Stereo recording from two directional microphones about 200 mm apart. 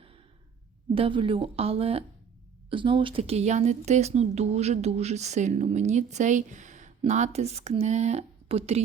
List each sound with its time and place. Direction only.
0.9 s a woman's voice: 25° right (ahead or behind)